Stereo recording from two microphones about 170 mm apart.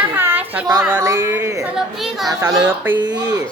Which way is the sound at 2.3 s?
15° right (ahead or behind).